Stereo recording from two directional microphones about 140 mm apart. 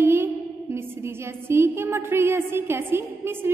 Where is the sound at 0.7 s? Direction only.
15° right (ahead or behind).